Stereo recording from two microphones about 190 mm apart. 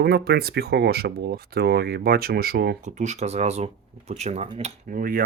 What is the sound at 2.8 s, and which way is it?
Speech, 40° right (ahead or behind).